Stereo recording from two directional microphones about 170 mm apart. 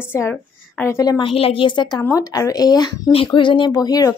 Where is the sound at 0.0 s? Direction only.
15° left (ahead or behind).